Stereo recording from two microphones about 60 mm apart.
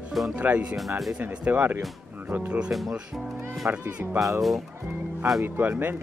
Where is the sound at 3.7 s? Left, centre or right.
Right.